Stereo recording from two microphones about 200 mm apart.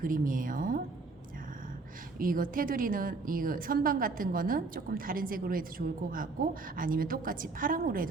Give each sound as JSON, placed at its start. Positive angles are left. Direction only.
{"t": 0.0, "sound": "a woman's voice", "side_deg": -45}
{"t": 2.1, "sound": "a woman's voice", "side_deg": -45}